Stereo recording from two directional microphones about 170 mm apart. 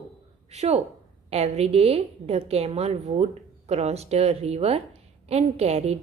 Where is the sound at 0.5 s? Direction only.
40° right (ahead or behind).